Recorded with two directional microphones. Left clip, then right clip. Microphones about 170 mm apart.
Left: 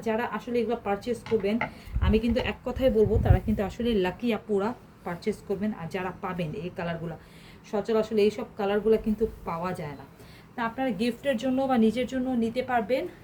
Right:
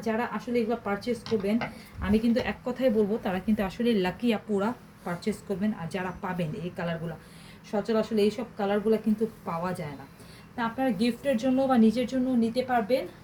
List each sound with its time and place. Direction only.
0.0 s a woman's voice: 25° left (ahead or behind); by 13.1 s centre (ahead or behind)